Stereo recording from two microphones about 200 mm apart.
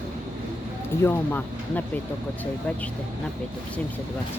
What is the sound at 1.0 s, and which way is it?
Speech, 10° left (ahead or behind).